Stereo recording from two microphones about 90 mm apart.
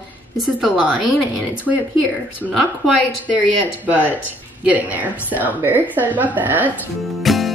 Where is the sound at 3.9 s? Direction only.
20° left (ahead or behind).